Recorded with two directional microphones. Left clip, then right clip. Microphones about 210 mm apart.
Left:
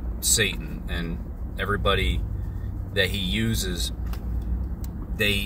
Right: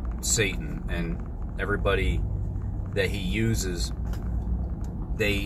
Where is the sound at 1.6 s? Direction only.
15° left (ahead or behind).